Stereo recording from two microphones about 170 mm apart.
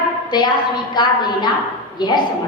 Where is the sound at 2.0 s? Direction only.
25° left (ahead or behind).